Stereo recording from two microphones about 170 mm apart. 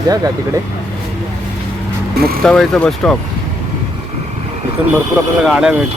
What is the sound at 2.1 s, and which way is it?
Speech, 65° right (ahead or behind).